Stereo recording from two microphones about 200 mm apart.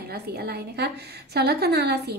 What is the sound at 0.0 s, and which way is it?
A woman's voice, 50° right (ahead or behind).